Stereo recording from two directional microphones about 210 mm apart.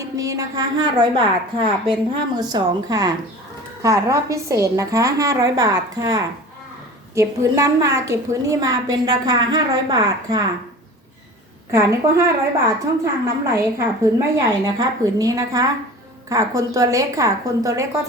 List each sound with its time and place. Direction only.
0.0 s a woman's voice: 15° right (ahead or behind)
11.7 s a woman's voice: 15° right (ahead or behind)